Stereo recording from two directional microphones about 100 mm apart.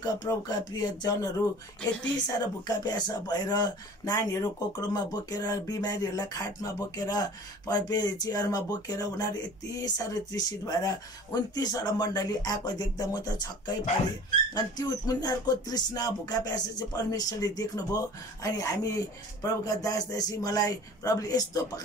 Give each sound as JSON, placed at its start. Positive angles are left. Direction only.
{"t": 0.0, "sound": "speech", "side_deg": 40}